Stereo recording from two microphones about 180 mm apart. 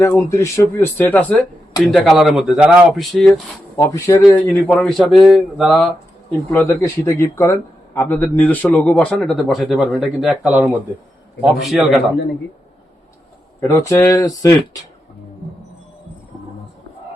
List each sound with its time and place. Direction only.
0.0 s speech: 15° left (ahead or behind)
3.8 s speech: 15° left (ahead or behind); by 5.9 s centre (ahead or behind)
6.5 s speech: 10° left (ahead or behind)
13.6 s speech: 15° left (ahead or behind)